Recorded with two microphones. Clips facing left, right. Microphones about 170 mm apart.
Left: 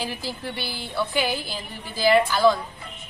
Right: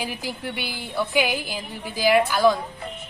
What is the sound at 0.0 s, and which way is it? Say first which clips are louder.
A woman's voice: right 1 dB; 15° right (ahead or behind).